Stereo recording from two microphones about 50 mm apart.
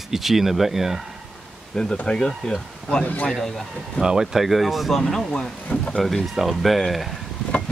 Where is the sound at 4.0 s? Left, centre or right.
Centre.